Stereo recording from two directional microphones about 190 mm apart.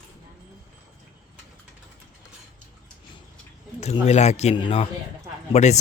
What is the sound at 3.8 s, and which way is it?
Speech, 35° left (ahead or behind).